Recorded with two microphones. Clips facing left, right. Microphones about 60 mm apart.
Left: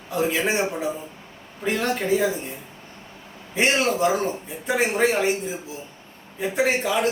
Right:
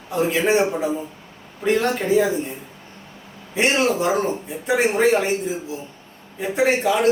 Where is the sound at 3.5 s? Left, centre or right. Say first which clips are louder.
Right 2 dB; centre.